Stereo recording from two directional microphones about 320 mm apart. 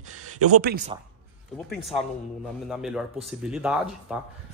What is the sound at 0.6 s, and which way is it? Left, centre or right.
Speech, right.